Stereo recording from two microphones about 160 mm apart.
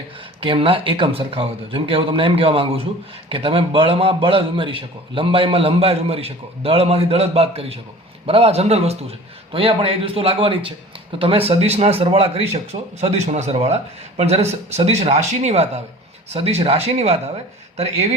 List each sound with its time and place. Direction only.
0.3 s a man's voice: 35° right (ahead or behind)